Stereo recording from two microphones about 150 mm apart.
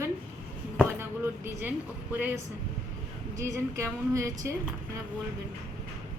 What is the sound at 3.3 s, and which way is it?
A woman's voice, 20° right (ahead or behind).